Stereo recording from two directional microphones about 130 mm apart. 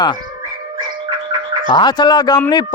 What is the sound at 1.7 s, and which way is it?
Speech, 35° left (ahead or behind).